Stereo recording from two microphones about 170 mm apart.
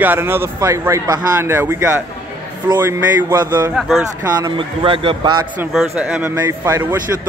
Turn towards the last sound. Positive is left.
turn(degrees=-15)  # may be behind; listen again after turning